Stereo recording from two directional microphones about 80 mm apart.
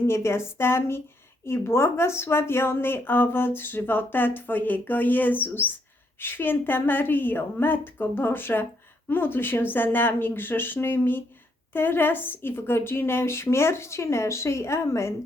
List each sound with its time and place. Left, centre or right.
0.1 s a woman's voice: left